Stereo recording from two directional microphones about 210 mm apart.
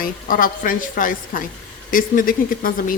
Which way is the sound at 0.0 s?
40° left (ahead or behind).